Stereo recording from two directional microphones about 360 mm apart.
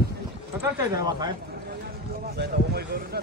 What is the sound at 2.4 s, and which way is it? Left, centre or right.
Speech, right.